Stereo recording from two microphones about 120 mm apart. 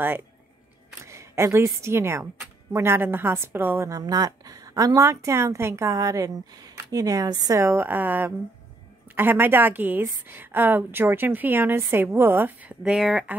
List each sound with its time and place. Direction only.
1.1 s a woman's voice: 20° right (ahead or behind)
7.5 s a woman's voice: 20° right (ahead or behind); by 13.2 s 5° right (ahead or behind)